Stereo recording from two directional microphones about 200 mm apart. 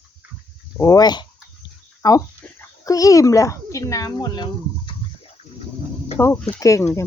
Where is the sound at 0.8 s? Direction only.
15° left (ahead or behind).